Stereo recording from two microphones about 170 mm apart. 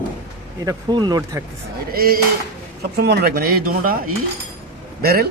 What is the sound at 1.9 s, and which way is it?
A man's voice, 60° right (ahead or behind).